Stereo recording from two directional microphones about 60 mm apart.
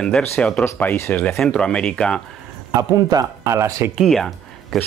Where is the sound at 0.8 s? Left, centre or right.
Left.